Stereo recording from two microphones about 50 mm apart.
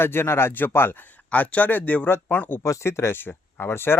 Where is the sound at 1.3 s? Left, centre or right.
Left.